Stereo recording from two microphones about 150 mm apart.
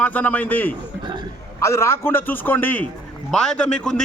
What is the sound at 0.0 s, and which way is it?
A man's voice, 10° left (ahead or behind).